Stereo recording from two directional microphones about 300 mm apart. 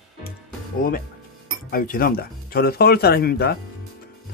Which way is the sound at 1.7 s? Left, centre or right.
Left.